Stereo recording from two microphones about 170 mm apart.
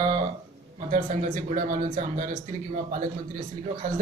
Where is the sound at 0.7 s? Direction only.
50° right (ahead or behind).